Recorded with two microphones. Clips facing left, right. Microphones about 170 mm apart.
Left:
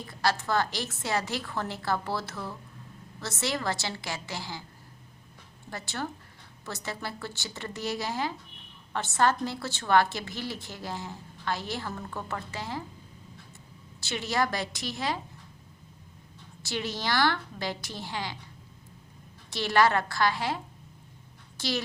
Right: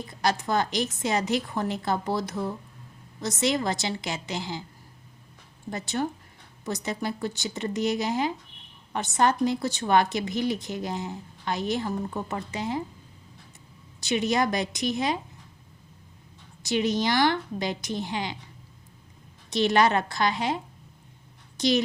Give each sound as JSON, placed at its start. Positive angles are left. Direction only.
{"t": 0.1, "sound": "a woman's voice", "side_deg": -20}
{"t": 5.7, "sound": "a woman's voice", "side_deg": -20}
{"t": 14.0, "sound": "a woman's voice", "side_deg": -20}
{"t": 16.6, "sound": "a woman's voice", "side_deg": -20}
{"t": 19.5, "sound": "a woman's voice", "side_deg": -20}
{"t": 21.6, "sound": "a woman's voice", "side_deg": -20}